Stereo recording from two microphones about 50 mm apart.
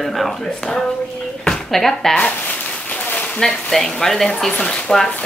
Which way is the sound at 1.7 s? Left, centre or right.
Centre.